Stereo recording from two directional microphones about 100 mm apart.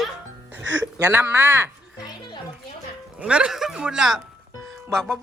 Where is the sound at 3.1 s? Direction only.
10° right (ahead or behind).